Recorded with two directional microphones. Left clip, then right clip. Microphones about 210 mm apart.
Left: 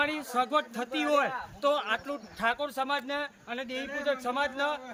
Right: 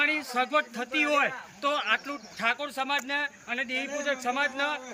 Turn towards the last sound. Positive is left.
turn(degrees=10)  # may be behind; listen again after turning